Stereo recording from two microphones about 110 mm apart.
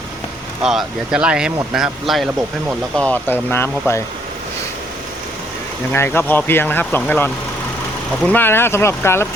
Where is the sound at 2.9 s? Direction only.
15° left (ahead or behind).